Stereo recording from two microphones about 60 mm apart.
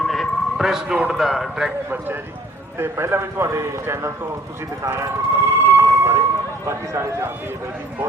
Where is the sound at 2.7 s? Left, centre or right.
Right.